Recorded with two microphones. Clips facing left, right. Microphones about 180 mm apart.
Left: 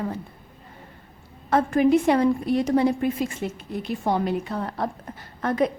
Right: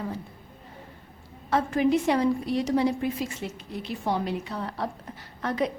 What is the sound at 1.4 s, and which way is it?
A woman's voice, 50° left (ahead or behind).